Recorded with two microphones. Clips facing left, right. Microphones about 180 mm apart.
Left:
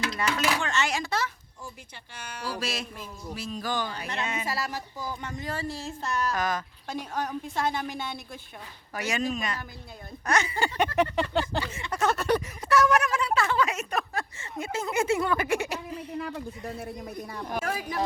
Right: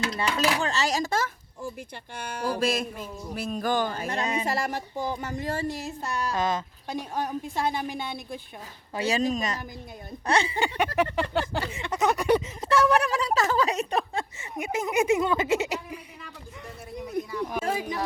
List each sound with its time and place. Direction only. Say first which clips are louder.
0.2 s speech: right 2 dB; 35° right (ahead or behind)
5.1 s speech: right 4 dB; 35° right (ahead or behind)
5.7 s speech: even; 15° right (ahead or behind)
9.0 s speech: right 4 dB; 30° right (ahead or behind)
10.9 s speech: even; 5° right (ahead or behind)
11.7 s speech: right 4 dB; 20° right (ahead or behind)
12.7 s speech: right 1 dB; 30° right (ahead or behind)
16.1 s speech: left 10 dB; 60° left (ahead or behind)
17.6 s speech: right 2 dB; 25° right (ahead or behind)